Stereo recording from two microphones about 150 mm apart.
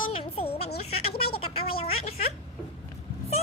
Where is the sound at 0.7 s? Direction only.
90° left.